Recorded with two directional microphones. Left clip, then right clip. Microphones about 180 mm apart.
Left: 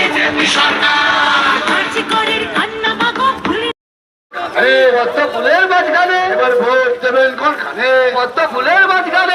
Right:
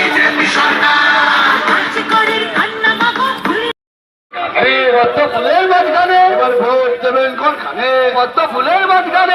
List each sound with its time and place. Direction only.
0.0 s music: 35° left (ahead or behind)
4.5 s a man's voice: 5° right (ahead or behind)